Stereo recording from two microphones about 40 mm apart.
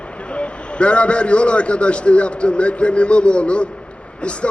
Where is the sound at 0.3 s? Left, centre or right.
Left.